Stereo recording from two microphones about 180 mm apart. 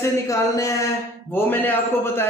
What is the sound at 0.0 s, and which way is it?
A man's voice, 15° left (ahead or behind).